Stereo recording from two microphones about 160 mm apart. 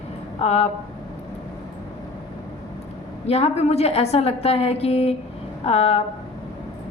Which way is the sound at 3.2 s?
40° left (ahead or behind).